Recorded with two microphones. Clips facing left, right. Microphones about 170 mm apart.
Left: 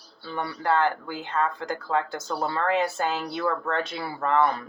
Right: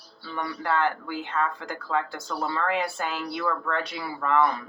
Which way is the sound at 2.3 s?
35° left (ahead or behind).